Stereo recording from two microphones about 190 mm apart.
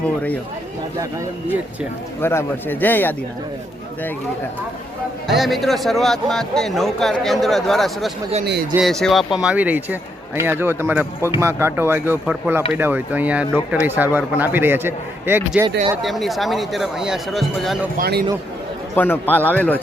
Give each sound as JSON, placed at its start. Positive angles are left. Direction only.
{"t": 2.2, "sound": "speech", "side_deg": 15}
{"t": 5.3, "sound": "a man's voice", "side_deg": 0}
{"t": 17.9, "sound": "speech", "side_deg": -55}
{"t": 18.9, "sound": "speech", "side_deg": 10}